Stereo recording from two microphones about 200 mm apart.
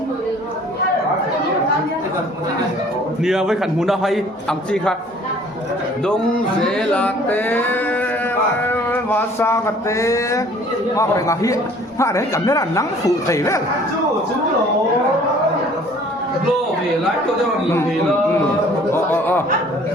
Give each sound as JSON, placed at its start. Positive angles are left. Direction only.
{"t": 3.2, "sound": "a man's voice", "side_deg": 0}
{"t": 6.7, "sound": "a man's voice", "side_deg": 5}
{"t": 19.1, "sound": "a man's voice", "side_deg": 10}